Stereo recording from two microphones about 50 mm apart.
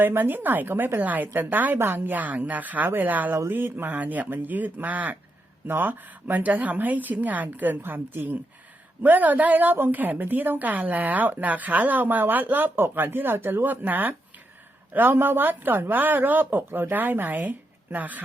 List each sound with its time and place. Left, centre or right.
0.1 s a woman's voice: right